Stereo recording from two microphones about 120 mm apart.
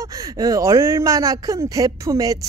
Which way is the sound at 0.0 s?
30° right (ahead or behind).